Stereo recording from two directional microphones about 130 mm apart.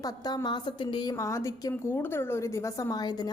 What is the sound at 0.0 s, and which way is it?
A woman's voice, 30° left (ahead or behind).